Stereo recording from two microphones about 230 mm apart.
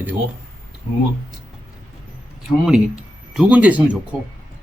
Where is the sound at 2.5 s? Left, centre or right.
Centre.